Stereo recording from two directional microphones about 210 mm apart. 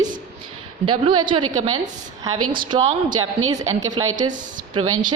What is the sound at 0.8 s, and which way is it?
Speech, 20° right (ahead or behind).